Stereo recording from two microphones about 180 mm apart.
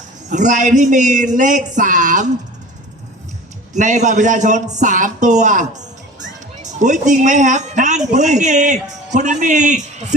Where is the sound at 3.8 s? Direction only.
40° right (ahead or behind).